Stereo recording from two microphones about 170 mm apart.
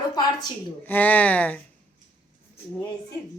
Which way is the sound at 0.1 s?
25° left (ahead or behind).